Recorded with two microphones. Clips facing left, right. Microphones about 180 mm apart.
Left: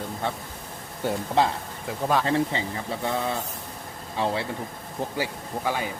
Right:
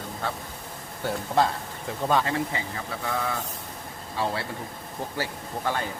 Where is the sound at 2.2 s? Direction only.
30° left (ahead or behind).